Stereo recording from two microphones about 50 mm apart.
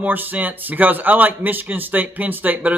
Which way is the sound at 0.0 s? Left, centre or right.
Right.